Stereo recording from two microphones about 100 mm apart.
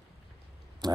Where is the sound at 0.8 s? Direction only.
45° right (ahead or behind).